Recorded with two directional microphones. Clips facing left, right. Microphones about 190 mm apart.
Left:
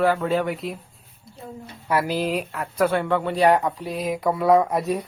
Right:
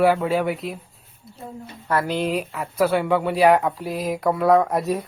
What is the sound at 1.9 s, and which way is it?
Speech, 10° left (ahead or behind).